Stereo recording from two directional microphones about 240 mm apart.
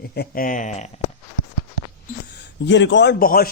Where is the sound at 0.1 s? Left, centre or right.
Left.